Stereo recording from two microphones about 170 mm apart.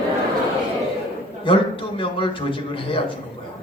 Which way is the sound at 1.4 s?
30° left (ahead or behind).